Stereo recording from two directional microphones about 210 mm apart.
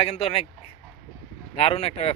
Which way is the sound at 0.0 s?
30° left (ahead or behind).